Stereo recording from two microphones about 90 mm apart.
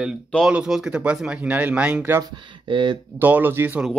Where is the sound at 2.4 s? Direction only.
60° right (ahead or behind).